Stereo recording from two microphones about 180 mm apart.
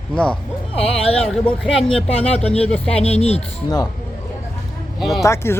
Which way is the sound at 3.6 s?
20° left (ahead or behind).